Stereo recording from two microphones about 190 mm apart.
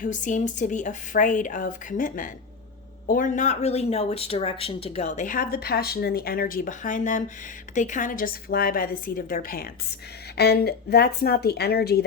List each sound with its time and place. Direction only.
0.0 s a woman's voice: 40° left (ahead or behind)